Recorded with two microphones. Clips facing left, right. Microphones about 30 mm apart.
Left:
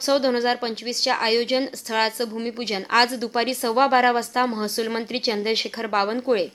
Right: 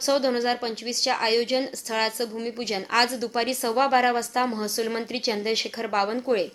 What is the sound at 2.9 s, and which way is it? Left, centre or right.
A woman's voice, left.